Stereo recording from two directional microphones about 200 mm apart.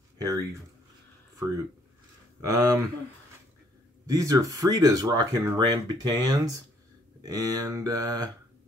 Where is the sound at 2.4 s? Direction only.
15° right (ahead or behind).